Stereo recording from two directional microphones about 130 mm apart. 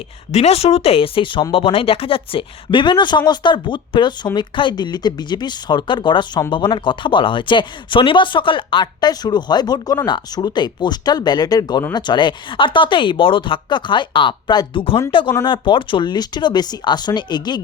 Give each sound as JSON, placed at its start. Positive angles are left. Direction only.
{"t": 0.3, "sound": "speech", "side_deg": 55}